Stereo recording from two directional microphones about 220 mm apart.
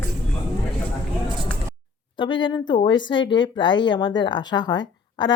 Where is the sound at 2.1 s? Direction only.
20° left (ahead or behind).